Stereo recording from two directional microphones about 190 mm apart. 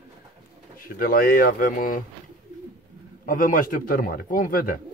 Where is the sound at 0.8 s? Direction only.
50° left (ahead or behind).